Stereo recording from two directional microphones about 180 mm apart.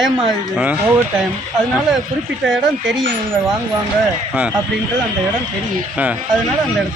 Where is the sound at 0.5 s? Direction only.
5° right (ahead or behind).